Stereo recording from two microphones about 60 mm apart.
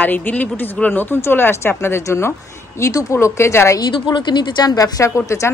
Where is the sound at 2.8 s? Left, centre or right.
Left.